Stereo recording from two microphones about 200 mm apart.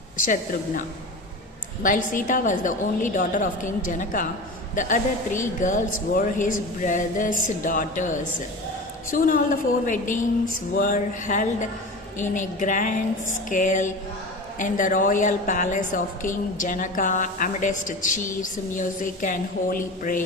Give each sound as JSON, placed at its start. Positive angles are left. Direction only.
{"t": 1.8, "sound": "a woman's voice", "side_deg": 40}